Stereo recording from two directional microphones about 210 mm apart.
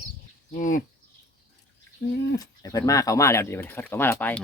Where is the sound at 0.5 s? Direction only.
35° left (ahead or behind).